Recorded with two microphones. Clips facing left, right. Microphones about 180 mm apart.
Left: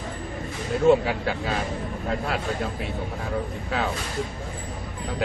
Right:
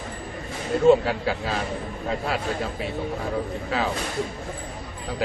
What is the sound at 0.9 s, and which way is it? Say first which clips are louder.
Speech: right 2 dB; centre (ahead or behind).